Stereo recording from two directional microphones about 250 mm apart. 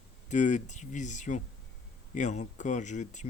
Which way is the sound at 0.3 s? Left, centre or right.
Left.